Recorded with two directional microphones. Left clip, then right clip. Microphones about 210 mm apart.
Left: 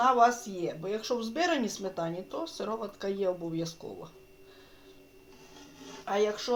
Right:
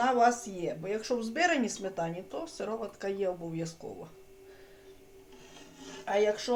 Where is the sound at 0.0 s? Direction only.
10° left (ahead or behind).